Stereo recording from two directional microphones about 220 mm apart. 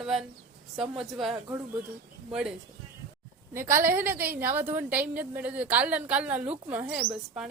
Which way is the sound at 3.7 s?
40° right (ahead or behind).